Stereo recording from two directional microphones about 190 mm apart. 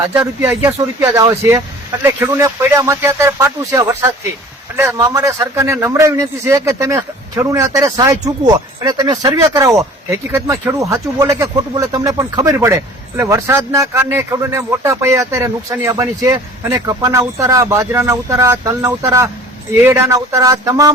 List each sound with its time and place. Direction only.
0.1 s a man's voice: 15° right (ahead or behind)